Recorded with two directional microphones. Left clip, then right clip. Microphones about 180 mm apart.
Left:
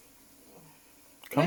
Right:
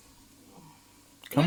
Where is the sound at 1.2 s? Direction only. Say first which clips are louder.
Even; 5° right (ahead or behind).